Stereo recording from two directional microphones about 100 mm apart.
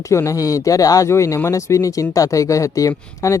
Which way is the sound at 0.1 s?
30° left (ahead or behind).